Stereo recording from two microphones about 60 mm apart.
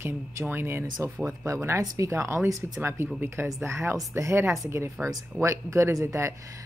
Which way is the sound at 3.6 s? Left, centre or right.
Right.